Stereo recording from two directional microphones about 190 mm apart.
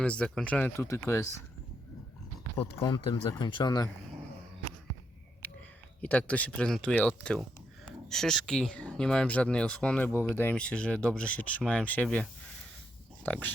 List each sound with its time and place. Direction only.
0.0 s speech: 5° left (ahead or behind)
2.6 s speech: 25° left (ahead or behind)
6.0 s speech: 5° left (ahead or behind)